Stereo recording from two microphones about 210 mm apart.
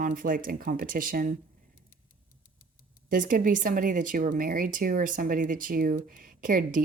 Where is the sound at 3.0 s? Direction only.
40° right (ahead or behind).